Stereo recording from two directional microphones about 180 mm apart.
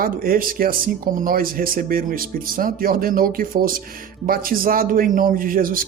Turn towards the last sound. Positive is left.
turn(degrees=-50)  # may be behind; listen again after turning